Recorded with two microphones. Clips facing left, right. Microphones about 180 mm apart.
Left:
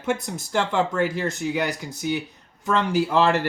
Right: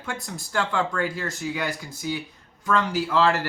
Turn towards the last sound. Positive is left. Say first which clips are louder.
# left 2 dB
turn(degrees=20)  # may be behind; listen again after turning